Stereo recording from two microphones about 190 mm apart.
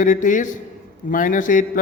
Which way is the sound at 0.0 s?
40° left (ahead or behind).